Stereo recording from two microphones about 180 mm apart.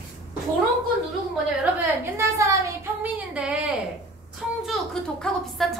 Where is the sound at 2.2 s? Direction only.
15° right (ahead or behind).